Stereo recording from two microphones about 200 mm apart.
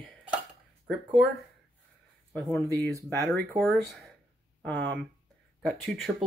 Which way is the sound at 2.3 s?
Centre (ahead or behind).